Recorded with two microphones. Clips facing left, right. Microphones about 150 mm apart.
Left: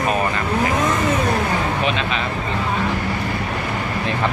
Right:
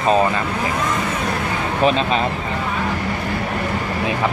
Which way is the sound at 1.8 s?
35° right (ahead or behind).